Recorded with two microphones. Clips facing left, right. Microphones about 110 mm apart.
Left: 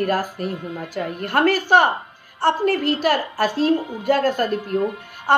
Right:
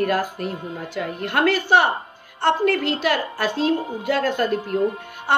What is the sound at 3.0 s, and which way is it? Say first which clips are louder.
Speech: left 3 dB; 45° left (ahead or behind).